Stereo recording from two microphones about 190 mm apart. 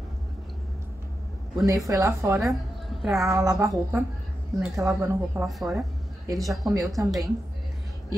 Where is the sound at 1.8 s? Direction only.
15° right (ahead or behind).